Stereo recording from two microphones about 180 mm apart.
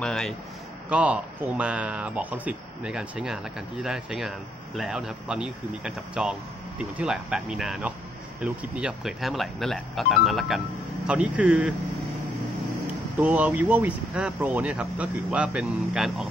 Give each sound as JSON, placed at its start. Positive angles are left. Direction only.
{"t": 0.0, "sound": "speech", "side_deg": 0}
{"t": 13.2, "sound": "speech", "side_deg": -10}